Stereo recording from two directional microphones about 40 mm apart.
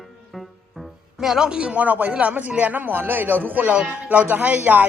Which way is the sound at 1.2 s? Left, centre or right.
Centre.